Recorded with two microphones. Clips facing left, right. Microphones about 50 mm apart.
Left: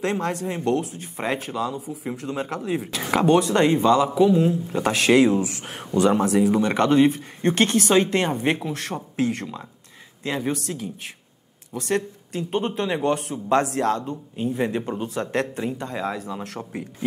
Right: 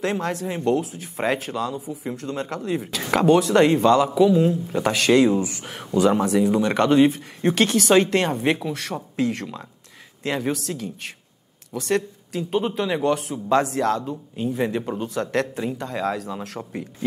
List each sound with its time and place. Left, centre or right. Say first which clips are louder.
0.0 s speech: even; centre
1.5 s speech: even; centre
16.3 s speech: even; centre